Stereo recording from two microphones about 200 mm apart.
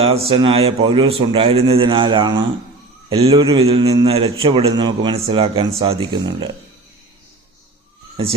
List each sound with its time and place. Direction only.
0.0 s a man's voice: 30° right (ahead or behind)